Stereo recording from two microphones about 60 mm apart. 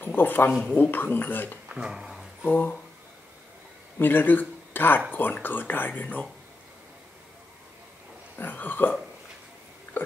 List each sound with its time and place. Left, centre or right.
0.0 s speech: left
1.7 s speech: centre
2.4 s speech: left
4.0 s speech: left
8.4 s burping: left
9.9 s a sound: left